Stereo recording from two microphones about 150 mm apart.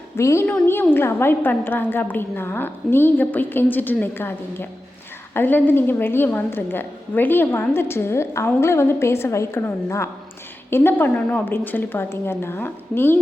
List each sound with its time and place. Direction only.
0.2 s a woman's voice: 20° left (ahead or behind)